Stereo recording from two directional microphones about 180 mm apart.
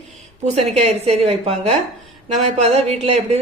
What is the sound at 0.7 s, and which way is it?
A woman's voice, 35° right (ahead or behind).